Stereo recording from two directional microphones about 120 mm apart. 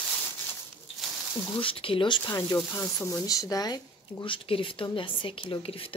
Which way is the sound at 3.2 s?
30° left (ahead or behind).